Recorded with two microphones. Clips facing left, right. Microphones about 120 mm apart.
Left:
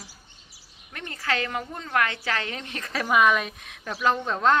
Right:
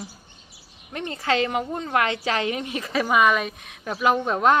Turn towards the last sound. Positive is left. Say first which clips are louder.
# right 3 dB
turn(degrees=-10)  # may be behind; listen again after turning